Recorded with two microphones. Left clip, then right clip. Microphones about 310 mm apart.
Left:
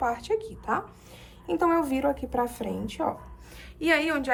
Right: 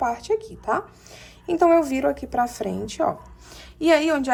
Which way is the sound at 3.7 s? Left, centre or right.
Centre.